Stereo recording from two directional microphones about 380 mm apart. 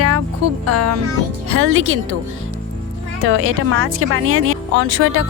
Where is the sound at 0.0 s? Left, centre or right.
Right.